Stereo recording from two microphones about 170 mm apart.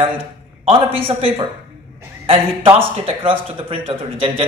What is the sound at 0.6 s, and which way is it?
Speech, 35° right (ahead or behind).